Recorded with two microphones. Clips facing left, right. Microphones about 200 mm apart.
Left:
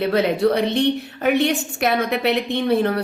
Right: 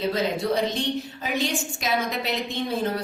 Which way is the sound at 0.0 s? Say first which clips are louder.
Left 7 dB; 65° left (ahead or behind).